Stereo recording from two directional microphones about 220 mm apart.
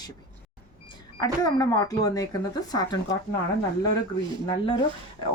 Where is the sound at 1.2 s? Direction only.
15° left (ahead or behind).